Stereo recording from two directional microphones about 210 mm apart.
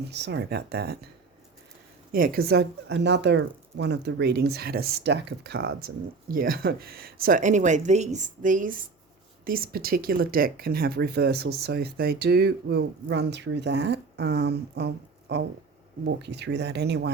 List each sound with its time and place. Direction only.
0.1 s speech: 55° right (ahead or behind)
2.1 s speech: 45° right (ahead or behind)